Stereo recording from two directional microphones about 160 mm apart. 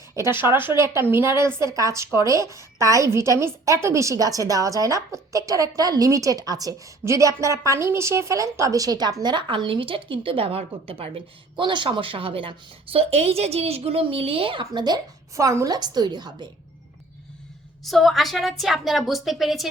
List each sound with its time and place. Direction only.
0.2 s a woman's voice: 15° right (ahead or behind)
17.8 s speech: centre (ahead or behind)